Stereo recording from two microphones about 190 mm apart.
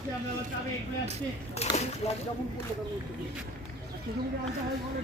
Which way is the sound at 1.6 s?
35° left (ahead or behind).